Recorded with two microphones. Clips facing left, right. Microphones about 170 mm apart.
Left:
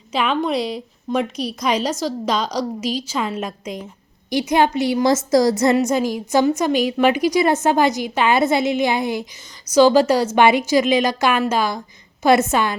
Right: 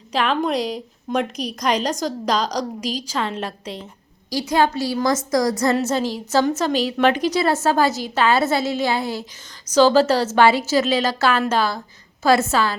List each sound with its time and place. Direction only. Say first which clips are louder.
0.1 s a woman's voice: even; 5° left (ahead or behind)
0.5 s speech: left 1 dB; 40° right (ahead or behind)
1.1 s a woman's voice: left 1 dB; 5° left (ahead or behind); by 5.7 s 25° left (ahead or behind)
5.7 s a woman's voice: left 3 dB; 15° left (ahead or behind)